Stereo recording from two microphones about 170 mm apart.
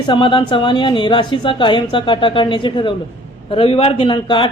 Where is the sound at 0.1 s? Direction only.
25° left (ahead or behind).